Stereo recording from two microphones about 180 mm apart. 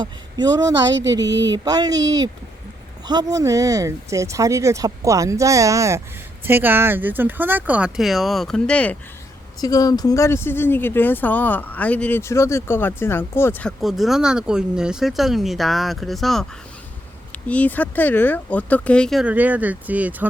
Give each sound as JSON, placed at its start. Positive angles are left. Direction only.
{"t": 0.0, "sound": "speech", "side_deg": -25}
{"t": 1.2, "sound": "speech", "side_deg": -75}
{"t": 1.5, "sound": "speech", "side_deg": -20}
{"t": 9.6, "sound": "speech", "side_deg": 20}
{"t": 19.2, "sound": "speech", "side_deg": -10}